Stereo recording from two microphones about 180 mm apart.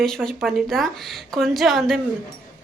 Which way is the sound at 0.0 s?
5° left (ahead or behind).